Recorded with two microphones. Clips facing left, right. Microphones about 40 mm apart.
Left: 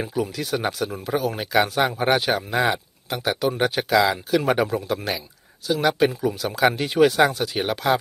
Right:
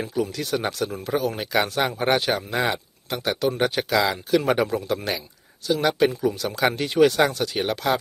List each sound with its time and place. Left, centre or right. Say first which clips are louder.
0.0 s speech: even; centre